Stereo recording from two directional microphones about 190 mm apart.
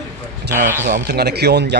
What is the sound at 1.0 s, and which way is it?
Speech, 60° right (ahead or behind).